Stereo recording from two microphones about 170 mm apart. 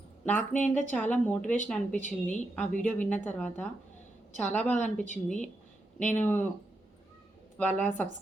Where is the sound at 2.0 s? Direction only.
45° left (ahead or behind).